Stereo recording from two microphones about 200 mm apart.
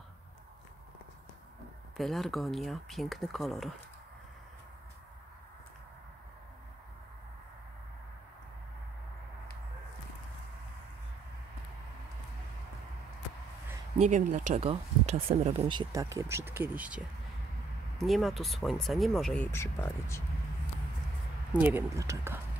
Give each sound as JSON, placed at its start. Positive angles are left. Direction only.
{"t": 2.0, "sound": "speech", "side_deg": 0}
{"t": 14.0, "sound": "speech", "side_deg": -35}
{"t": 15.9, "sound": "speech", "side_deg": -15}
{"t": 21.5, "sound": "speech", "side_deg": -10}